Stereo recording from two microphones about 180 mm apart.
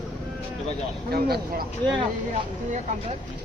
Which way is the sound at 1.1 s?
60° right (ahead or behind).